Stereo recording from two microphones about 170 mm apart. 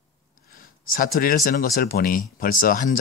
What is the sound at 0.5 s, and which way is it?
Speech, 55° left (ahead or behind).